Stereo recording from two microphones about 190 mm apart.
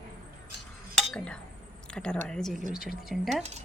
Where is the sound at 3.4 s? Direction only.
35° right (ahead or behind).